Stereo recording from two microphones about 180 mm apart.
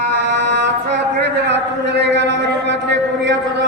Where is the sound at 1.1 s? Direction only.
70° right (ahead or behind).